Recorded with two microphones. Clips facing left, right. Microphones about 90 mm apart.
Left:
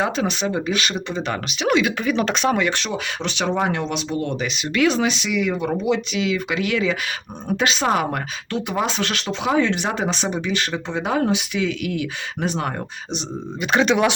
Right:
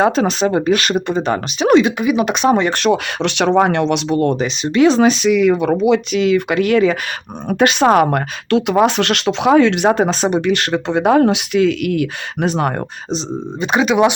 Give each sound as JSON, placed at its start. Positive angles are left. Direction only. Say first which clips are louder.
{"t": 0.0, "sound": "speech", "louder": "right 8 dB", "side_deg": -40}
{"t": 0.5, "sound": "speech", "louder": "right 8 dB", "side_deg": -55}
{"t": 1.3, "sound": "speech", "louder": "right 8 dB", "side_deg": -40}
{"t": 2.0, "sound": "speech", "louder": "right 5 dB", "side_deg": -15}
{"t": 2.7, "sound": "speech", "louder": "right 10 dB", "side_deg": -65}
{"t": 4.3, "sound": "speech", "louder": "right 7 dB", "side_deg": -35}
{"t": 5.0, "sound": "speech", "louder": "right 10 dB", "side_deg": -45}
{"t": 6.1, "sound": "speech", "louder": "right 8 dB", "side_deg": -50}
{"t": 7.6, "sound": "speech", "louder": "right 9 dB", "side_deg": -60}
{"t": 8.5, "sound": "speech", "louder": "right 10 dB", "side_deg": -70}
{"t": 9.8, "sound": "speech", "louder": "right 9 dB", "side_deg": -50}
{"t": 10.2, "sound": "speech", "louder": "right 8 dB", "side_deg": -70}
{"t": 13.7, "sound": "speech", "louder": "right 4 dB", "side_deg": -15}